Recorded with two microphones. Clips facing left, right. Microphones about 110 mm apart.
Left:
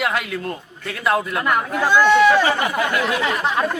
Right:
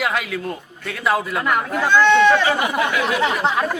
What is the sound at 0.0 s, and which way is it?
A man's voice, centre (ahead or behind).